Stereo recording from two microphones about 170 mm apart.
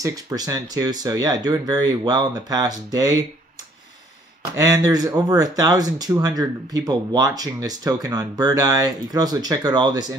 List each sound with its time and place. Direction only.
0.0 s speech: 20° right (ahead or behind)
4.6 s speech: 20° right (ahead or behind)